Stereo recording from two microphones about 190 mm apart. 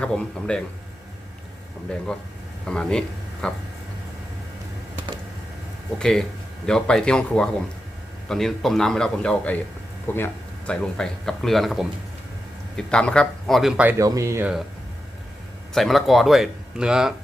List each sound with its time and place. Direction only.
0.0 s speech: 5° left (ahead or behind)
2.6 s speech: 5° left (ahead or behind)
6.0 s speech: centre (ahead or behind)
14.0 s speech: 15° right (ahead or behind)
15.7 s speech: centre (ahead or behind)